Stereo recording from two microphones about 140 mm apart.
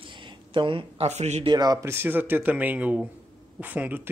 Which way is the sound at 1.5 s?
30° right (ahead or behind).